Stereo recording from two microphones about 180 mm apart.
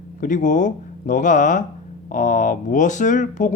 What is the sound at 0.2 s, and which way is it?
Speech, 45° left (ahead or behind).